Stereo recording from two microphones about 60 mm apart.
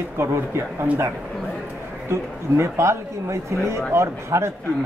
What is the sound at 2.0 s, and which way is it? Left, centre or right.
Speech, right.